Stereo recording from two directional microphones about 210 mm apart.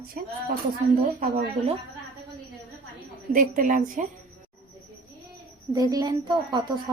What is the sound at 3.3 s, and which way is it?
Speech, 40° right (ahead or behind).